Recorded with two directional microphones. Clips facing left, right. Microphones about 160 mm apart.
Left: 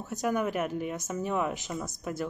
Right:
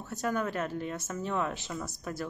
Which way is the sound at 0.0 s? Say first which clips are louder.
Left 3 dB; 15° left (ahead or behind).